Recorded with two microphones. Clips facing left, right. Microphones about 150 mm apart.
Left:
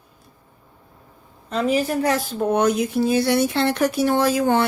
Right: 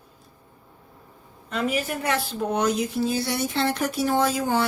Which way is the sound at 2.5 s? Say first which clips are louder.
Left 5 dB; 55° left (ahead or behind).